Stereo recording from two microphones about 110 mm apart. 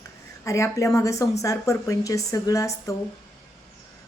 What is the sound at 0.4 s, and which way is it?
A woman's voice, 25° left (ahead or behind).